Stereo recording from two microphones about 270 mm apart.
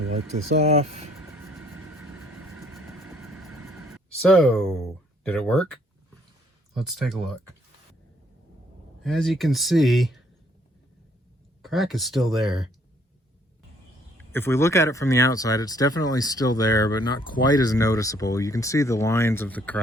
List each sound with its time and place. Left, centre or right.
0.6 s speech: right
1.4 s vehicle: centre
5.2 s speech: centre
6.7 s speech: centre
9.0 s speech: centre
11.6 s speech: centre
14.3 s speech: centre